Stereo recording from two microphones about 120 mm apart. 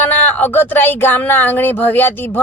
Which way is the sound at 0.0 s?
15° left (ahead or behind).